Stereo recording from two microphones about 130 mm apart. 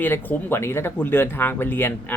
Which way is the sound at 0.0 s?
15° left (ahead or behind).